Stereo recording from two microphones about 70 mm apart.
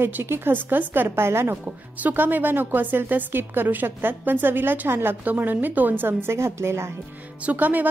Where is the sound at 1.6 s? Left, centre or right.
Right.